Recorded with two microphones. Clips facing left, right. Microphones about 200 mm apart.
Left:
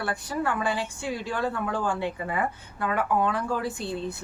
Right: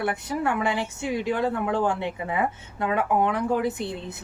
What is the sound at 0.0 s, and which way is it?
A woman's voice, 20° right (ahead or behind).